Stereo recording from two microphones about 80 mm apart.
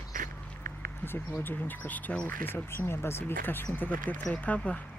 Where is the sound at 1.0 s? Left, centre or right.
Left.